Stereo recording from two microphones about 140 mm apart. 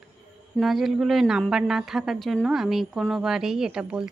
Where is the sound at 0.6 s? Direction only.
Centre (ahead or behind).